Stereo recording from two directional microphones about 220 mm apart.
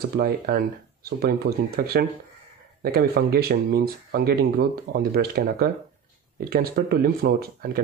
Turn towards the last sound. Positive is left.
turn(degrees=-45)  # may be behind; listen again after turning